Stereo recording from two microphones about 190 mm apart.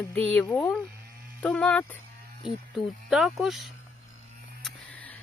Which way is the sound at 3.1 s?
Centre (ahead or behind).